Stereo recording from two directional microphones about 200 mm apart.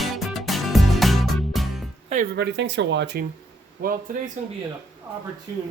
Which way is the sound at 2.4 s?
60° right (ahead or behind).